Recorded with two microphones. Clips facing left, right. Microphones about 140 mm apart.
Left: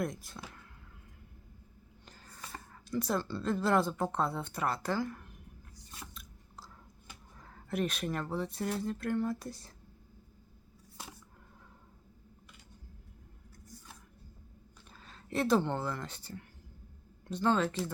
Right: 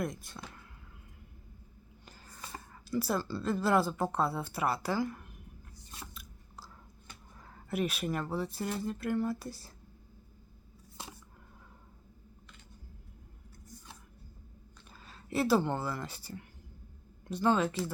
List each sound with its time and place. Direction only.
0.0 s speech: centre (ahead or behind)
2.0 s a sound: 5° right (ahead or behind)
2.7 s speech: 5° right (ahead or behind)
7.3 s speech: 5° right (ahead or behind)
11.0 s a sound: 25° right (ahead or behind)
14.8 s speech: 5° right (ahead or behind)